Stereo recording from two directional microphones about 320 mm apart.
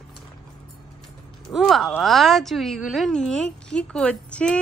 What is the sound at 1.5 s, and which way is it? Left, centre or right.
A woman's voice, centre.